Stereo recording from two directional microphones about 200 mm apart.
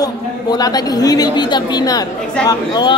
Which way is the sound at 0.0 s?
20° left (ahead or behind).